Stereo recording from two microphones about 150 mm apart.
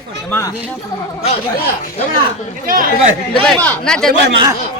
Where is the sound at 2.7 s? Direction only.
65° right (ahead or behind).